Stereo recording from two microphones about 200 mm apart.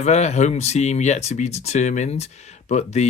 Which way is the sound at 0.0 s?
35° left (ahead or behind).